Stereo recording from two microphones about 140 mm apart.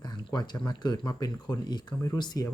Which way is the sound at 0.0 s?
30° left (ahead or behind).